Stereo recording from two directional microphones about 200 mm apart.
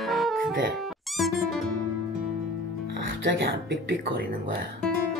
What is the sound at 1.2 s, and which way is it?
Speech, centre (ahead or behind).